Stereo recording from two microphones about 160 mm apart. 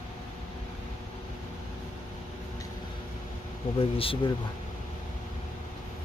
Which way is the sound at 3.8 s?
35° left (ahead or behind).